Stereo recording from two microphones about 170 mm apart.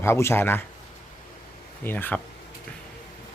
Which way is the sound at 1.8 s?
10° left (ahead or behind).